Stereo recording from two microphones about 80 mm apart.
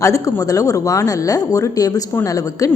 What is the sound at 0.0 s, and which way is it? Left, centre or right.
A woman's voice, left.